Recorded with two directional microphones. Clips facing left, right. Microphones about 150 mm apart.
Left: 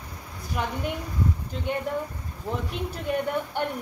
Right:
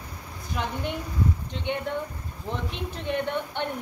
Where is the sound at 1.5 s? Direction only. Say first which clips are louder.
Left 1 dB; 5° left (ahead or behind).